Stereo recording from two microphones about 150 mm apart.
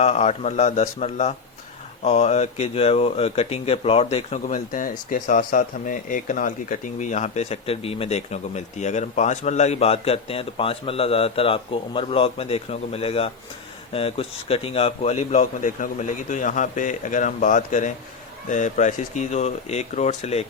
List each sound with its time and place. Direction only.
0.0 s a man's voice: 45° left (ahead or behind)